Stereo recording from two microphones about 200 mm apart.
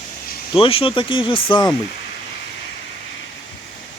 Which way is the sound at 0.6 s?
25° left (ahead or behind).